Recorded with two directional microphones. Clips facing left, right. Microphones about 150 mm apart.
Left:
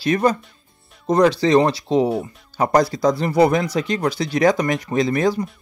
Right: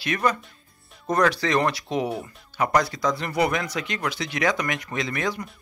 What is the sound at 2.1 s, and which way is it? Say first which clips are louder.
Speech: left 8 dB; centre (ahead or behind).